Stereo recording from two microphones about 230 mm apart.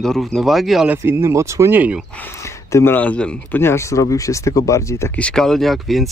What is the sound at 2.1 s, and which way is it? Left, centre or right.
Speech, centre.